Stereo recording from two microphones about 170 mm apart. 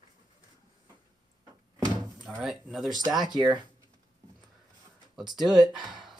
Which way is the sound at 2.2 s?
Centre (ahead or behind).